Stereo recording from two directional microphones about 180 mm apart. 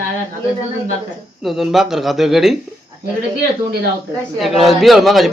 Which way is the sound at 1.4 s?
Centre (ahead or behind).